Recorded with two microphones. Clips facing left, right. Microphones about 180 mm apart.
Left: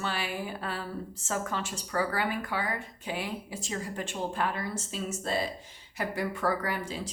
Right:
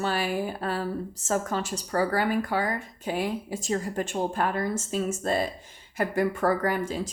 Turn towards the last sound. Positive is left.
turn(degrees=-45)  # may be behind; listen again after turning